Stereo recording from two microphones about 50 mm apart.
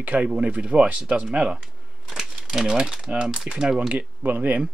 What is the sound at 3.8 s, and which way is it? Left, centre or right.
Speech, right.